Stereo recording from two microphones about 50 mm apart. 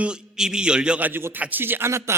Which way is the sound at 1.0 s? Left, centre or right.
Right.